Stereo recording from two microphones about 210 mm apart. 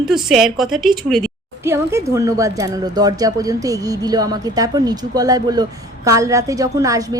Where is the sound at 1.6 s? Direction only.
15° right (ahead or behind).